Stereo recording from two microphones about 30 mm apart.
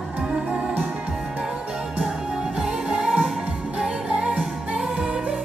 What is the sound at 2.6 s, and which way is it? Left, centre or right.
Music, right.